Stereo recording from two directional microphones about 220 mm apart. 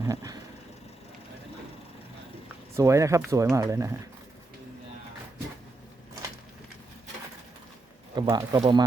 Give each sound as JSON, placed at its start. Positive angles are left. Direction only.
{"t": 0.0, "sound": "vehicle", "side_deg": -15}
{"t": 2.7, "sound": "speech", "side_deg": -15}
{"t": 8.1, "sound": "speech", "side_deg": -20}